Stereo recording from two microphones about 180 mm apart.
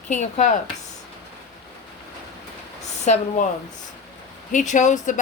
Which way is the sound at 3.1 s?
40° left (ahead or behind).